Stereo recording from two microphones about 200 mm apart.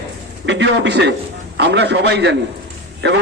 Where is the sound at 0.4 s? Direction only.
60° right (ahead or behind).